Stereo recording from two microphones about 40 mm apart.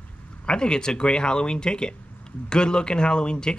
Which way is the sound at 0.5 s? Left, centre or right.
Left.